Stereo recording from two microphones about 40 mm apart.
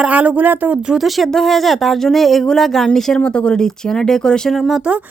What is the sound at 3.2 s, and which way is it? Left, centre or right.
Speech, left.